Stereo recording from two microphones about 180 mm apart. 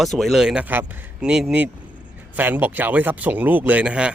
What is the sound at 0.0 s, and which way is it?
A man's voice, centre (ahead or behind).